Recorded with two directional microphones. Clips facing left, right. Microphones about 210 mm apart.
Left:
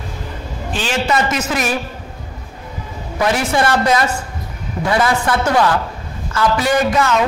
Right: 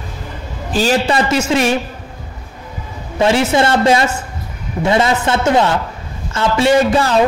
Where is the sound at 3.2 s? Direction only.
25° right (ahead or behind).